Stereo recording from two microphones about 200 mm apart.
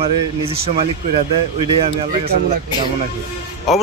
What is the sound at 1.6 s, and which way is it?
Speech, 25° right (ahead or behind).